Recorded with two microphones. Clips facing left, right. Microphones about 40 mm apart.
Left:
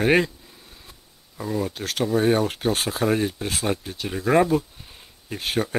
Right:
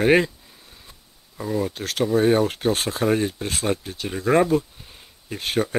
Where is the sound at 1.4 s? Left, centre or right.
Centre.